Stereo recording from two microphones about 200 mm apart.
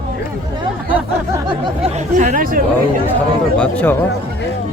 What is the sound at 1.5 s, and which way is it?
Speech, 25° right (ahead or behind).